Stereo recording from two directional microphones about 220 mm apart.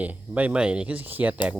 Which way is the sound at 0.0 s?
5° right (ahead or behind).